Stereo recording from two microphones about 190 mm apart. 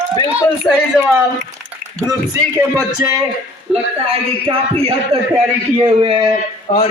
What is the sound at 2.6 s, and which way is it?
Speech, 15° right (ahead or behind).